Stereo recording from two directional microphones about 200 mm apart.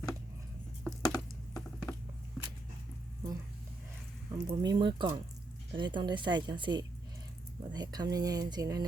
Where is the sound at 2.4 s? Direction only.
Centre (ahead or behind).